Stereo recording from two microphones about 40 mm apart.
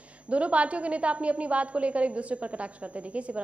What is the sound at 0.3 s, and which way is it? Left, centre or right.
A woman's voice, right.